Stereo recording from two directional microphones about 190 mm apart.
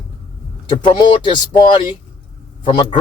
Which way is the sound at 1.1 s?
25° left (ahead or behind).